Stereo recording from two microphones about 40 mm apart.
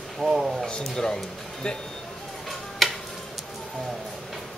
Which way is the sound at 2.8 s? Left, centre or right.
Centre.